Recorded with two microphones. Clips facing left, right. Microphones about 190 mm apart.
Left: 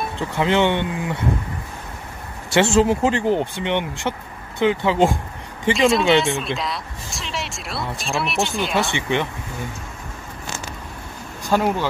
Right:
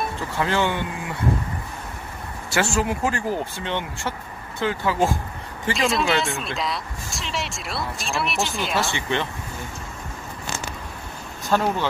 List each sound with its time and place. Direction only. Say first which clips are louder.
0.2 s speech: left 6 dB; 20° left (ahead or behind)
2.5 s speech: left 7 dB; 25° left (ahead or behind)
5.8 s speech: left 6 dB; centre (ahead or behind)
8.9 s speech: left 3 dB; 15° left (ahead or behind)
11.4 s speech: left 2 dB; 10° left (ahead or behind)